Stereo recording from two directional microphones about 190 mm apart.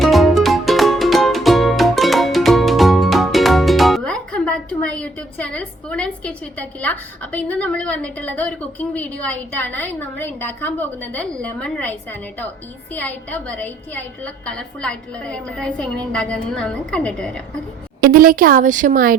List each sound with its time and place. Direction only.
0.0 s music: centre (ahead or behind)
12.9 s a woman's voice: 10° left (ahead or behind)
18.0 s a woman's voice: 50° right (ahead or behind)